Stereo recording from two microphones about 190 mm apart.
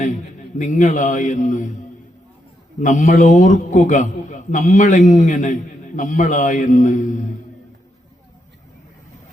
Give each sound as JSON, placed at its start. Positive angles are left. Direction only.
{"t": 0.6, "sound": "a man's voice", "side_deg": 40}
{"t": 2.8, "sound": "a man's voice", "side_deg": 40}